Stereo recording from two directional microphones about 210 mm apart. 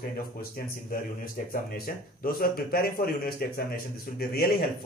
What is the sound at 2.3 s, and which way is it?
A man's voice, 45° left (ahead or behind).